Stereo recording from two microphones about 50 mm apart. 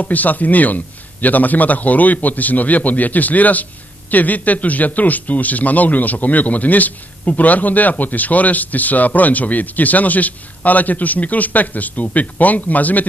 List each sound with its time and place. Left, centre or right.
0.0 s a man's voice: left